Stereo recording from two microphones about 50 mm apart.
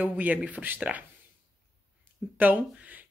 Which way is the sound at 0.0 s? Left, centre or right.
Right.